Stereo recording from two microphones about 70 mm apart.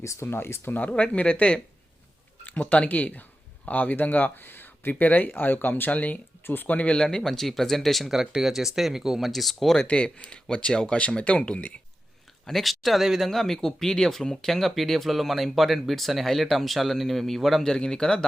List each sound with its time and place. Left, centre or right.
0.0 s speech: left
0.8 s speech: left; by 9.8 s centre
9.8 s speech: centre
12.5 s speech: centre